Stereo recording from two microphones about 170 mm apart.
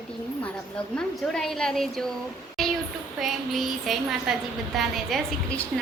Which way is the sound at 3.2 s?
Centre (ahead or behind).